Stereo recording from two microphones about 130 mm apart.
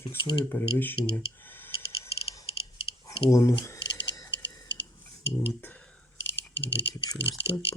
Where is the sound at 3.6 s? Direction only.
30° left (ahead or behind).